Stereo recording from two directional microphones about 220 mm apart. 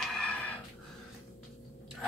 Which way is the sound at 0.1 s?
5° left (ahead or behind).